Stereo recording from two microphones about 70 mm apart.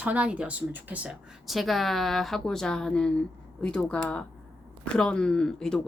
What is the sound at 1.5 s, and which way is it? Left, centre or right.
Speech, centre.